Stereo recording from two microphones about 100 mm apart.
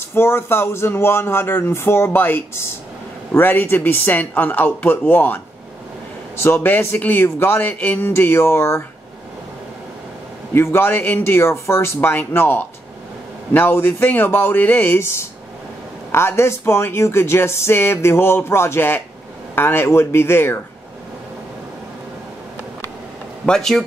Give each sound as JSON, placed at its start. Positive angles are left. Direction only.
{"t": 0.1, "sound": "speech", "side_deg": 25}
{"t": 10.5, "sound": "speech", "side_deg": 25}
{"t": 23.4, "sound": "speech", "side_deg": 5}